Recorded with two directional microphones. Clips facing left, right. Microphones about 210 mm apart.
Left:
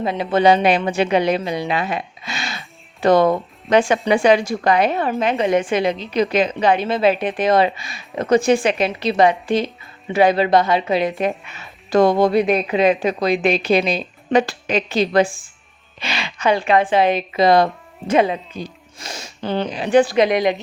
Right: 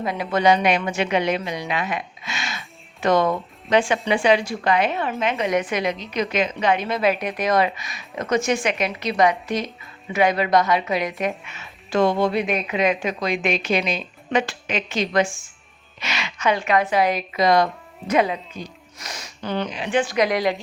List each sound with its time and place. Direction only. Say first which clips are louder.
0.0 s a woman's voice: left 4 dB; 25° left (ahead or behind)
3.7 s a woman's voice: left 4 dB; 45° left (ahead or behind); by 20.6 s 20° left (ahead or behind)